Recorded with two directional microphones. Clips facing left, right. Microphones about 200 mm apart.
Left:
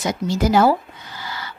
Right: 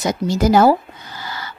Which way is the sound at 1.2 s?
45° right (ahead or behind).